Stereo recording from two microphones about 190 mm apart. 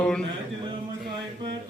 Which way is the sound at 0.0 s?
5° left (ahead or behind).